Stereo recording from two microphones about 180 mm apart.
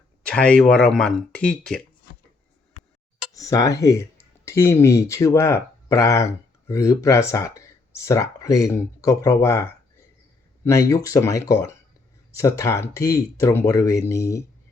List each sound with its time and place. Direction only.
0.2 s speech: 5° left (ahead or behind)
3.3 s speech: 20° left (ahead or behind)